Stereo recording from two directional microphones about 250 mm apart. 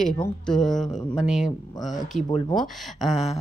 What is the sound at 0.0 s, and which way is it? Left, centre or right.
Speech, centre.